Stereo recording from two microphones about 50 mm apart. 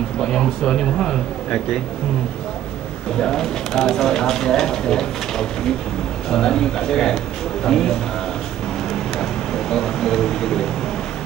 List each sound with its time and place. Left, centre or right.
0.2 s speech: centre
3.2 s speech: centre
9.2 s a sound: centre